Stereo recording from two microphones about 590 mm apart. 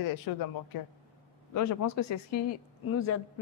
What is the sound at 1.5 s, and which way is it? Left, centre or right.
A woman's voice, left.